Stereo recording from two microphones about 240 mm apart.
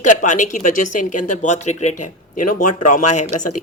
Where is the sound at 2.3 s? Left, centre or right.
Left.